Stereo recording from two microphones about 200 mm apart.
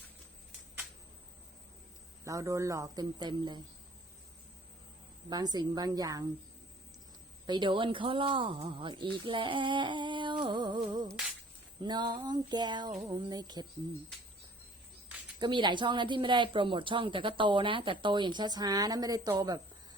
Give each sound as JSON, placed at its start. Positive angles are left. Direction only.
{"t": 2.2, "sound": "speech", "side_deg": -15}
{"t": 5.3, "sound": "a woman's voice", "side_deg": -20}
{"t": 7.4, "sound": "a woman's voice", "side_deg": -20}
{"t": 15.4, "sound": "a woman's voice", "side_deg": -20}